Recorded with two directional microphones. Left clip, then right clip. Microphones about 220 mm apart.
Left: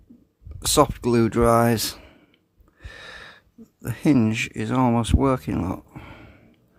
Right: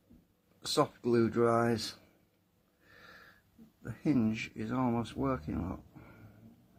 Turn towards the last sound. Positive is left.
turn(degrees=55)  # may be behind; listen again after turning